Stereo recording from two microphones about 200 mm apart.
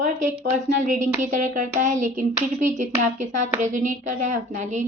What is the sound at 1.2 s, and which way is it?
A woman's voice, 40° right (ahead or behind).